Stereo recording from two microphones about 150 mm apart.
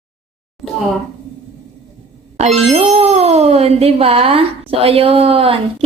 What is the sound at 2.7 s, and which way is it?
Speech, 45° right (ahead or behind).